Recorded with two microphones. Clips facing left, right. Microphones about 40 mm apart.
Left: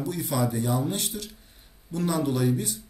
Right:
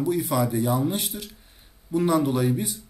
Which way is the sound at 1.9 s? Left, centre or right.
Centre.